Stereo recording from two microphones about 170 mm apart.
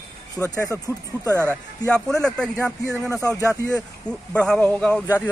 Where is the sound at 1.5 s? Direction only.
5° left (ahead or behind).